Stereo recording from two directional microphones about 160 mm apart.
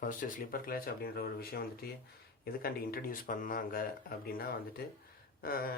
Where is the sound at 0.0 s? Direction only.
55° left (ahead or behind).